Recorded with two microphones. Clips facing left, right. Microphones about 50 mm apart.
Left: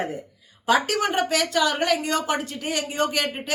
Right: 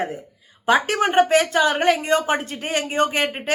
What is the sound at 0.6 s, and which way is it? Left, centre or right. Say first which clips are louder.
Speech: right 3 dB; right.